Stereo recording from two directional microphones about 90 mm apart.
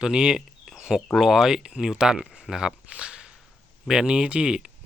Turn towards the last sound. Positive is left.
turn(degrees=-10)  # may be behind; listen again after turning